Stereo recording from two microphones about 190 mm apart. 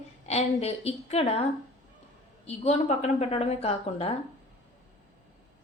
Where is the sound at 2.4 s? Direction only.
35° left (ahead or behind).